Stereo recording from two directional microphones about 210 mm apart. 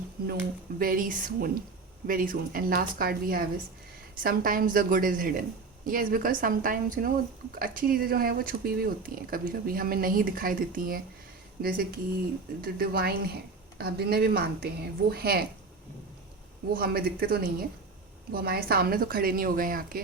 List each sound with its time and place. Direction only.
0.8 s a woman's voice: 40° right (ahead or behind)
16.7 s speech: 45° right (ahead or behind)